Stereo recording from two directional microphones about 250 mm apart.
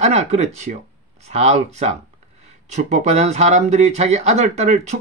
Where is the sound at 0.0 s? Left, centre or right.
Right.